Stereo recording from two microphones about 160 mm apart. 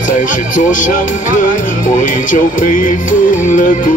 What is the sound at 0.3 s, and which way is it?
Music, 55° left (ahead or behind).